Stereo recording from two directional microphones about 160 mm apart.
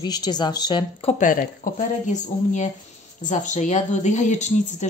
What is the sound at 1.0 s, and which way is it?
Speech, 55° left (ahead or behind).